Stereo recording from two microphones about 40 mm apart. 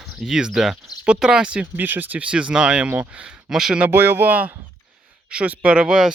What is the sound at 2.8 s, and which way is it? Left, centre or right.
Speech, right.